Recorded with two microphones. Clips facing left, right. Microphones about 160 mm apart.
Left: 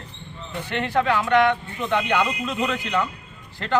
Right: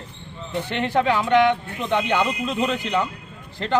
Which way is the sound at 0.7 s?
30° right (ahead or behind).